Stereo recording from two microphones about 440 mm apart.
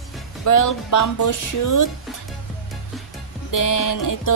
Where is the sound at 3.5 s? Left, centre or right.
Left.